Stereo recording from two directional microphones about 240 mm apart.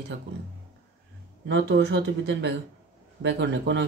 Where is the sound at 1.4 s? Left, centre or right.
Right.